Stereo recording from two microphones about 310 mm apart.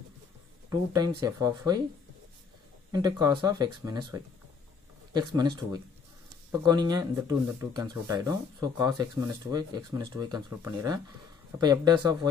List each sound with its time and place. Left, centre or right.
0.7 s speech: centre
2.9 s speech: centre